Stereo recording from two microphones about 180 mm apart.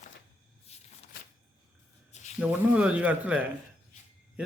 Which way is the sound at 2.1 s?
40° left (ahead or behind).